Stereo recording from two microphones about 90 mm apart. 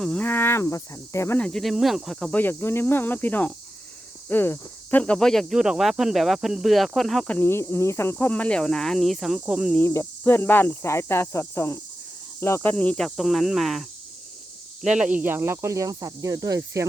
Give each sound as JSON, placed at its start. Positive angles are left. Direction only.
{"t": 0.0, "sound": "speech", "side_deg": 10}
{"t": 0.3, "sound": "cricket", "side_deg": 25}
{"t": 1.4, "sound": "speech", "side_deg": 10}
{"t": 2.3, "sound": "cricket", "side_deg": 25}
{"t": 4.3, "sound": "speech", "side_deg": 25}
{"t": 7.4, "sound": "speech", "side_deg": 30}
{"t": 9.8, "sound": "cricket", "side_deg": 30}
{"t": 12.4, "sound": "speech", "side_deg": 30}
{"t": 12.7, "sound": "speech", "side_deg": 10}
{"t": 13.1, "sound": "speech", "side_deg": 0}
{"t": 14.8, "sound": "speech", "side_deg": -10}